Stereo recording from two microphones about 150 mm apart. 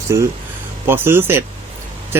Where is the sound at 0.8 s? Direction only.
15° right (ahead or behind).